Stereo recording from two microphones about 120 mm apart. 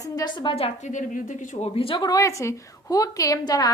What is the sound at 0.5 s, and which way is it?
Speech, 55° left (ahead or behind).